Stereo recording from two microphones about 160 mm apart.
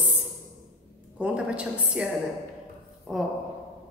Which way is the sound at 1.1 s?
10° right (ahead or behind).